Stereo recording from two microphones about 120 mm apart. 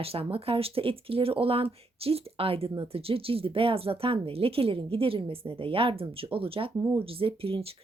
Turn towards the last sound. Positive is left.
turn(degrees=-50)  # may be behind; listen again after turning